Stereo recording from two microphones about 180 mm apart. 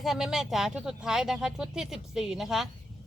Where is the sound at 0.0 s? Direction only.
Centre (ahead or behind).